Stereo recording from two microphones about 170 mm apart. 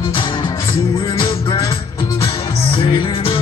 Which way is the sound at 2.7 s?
30° left (ahead or behind).